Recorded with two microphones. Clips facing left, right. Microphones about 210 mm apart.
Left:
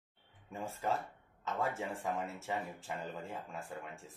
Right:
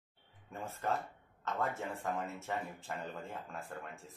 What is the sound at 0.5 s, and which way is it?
Speech, 10° left (ahead or behind).